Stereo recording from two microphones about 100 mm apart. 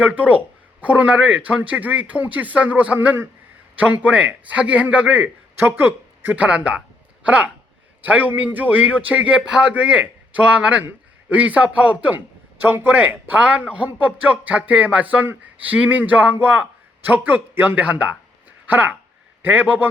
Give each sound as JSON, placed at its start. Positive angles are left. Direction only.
{"t": 0.0, "sound": "a man's voice", "side_deg": -15}